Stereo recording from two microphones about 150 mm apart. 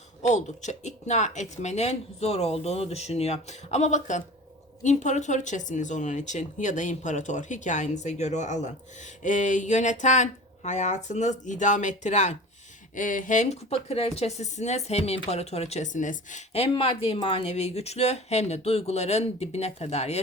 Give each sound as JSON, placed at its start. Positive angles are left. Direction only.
{"t": 0.2, "sound": "speech", "side_deg": 50}